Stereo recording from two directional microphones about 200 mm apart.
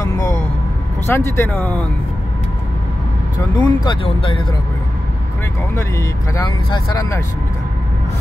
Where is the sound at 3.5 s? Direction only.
25° left (ahead or behind).